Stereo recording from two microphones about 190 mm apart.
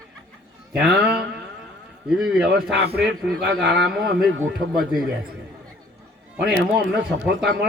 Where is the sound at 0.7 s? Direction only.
5° right (ahead or behind).